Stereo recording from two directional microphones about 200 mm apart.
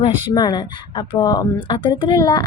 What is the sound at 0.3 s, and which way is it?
A woman's voice, 20° left (ahead or behind).